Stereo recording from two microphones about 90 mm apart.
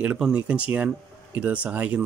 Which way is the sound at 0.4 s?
15° right (ahead or behind).